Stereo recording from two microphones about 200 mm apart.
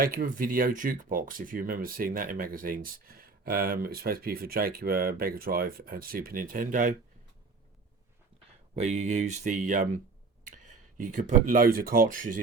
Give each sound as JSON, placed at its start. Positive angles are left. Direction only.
{"t": 0.0, "sound": "speech", "side_deg": -45}
{"t": 8.7, "sound": "speech", "side_deg": -35}